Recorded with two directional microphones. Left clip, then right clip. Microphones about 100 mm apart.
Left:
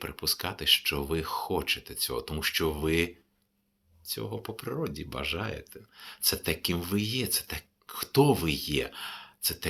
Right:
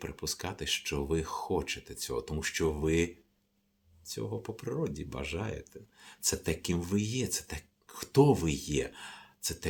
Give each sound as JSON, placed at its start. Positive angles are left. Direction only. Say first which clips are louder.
{"t": 0.2, "sound": "speech", "louder": "left 7 dB", "side_deg": -35}
{"t": 4.1, "sound": "speech", "louder": "left 2 dB", "side_deg": -30}